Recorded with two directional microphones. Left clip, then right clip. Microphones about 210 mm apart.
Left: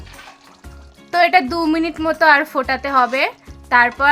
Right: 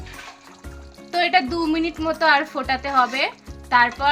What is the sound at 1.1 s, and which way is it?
A woman's voice, 40° left (ahead or behind).